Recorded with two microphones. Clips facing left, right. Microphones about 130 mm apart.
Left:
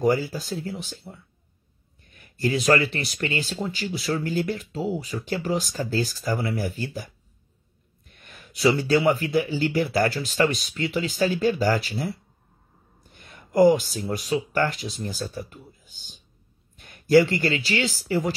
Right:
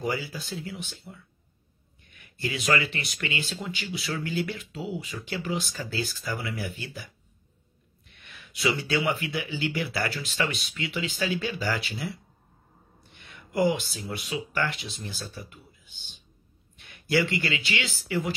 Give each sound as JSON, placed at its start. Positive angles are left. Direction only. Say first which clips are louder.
{"t": 0.0, "sound": "speech", "louder": "left 8 dB", "side_deg": 40}
{"t": 8.1, "sound": "speech", "louder": "left 3 dB", "side_deg": 45}